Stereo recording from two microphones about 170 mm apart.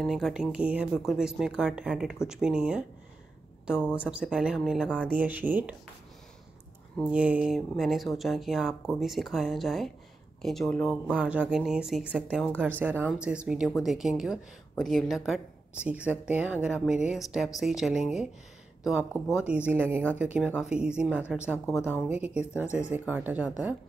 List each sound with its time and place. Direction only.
0.0 s speech: centre (ahead or behind)
7.1 s speech: 5° right (ahead or behind)
11.1 s speech: 5° right (ahead or behind)
22.7 s speech: 45° left (ahead or behind)
22.9 s speech: 10° right (ahead or behind)